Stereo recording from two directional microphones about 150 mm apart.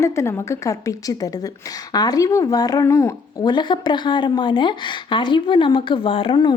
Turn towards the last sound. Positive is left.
turn(degrees=35)  # may be behind; listen again after turning